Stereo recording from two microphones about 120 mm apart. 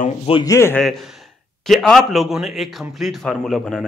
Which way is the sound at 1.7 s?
5° left (ahead or behind).